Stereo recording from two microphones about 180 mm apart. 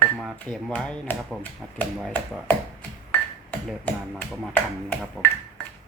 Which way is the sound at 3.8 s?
10° left (ahead or behind).